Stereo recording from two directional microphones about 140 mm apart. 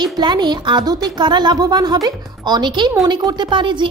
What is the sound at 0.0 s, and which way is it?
Speech, 30° right (ahead or behind).